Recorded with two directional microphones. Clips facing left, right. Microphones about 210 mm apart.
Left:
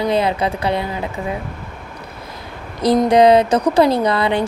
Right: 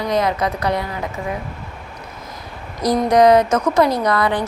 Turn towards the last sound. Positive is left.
turn(degrees=25)  # may be behind; listen again after turning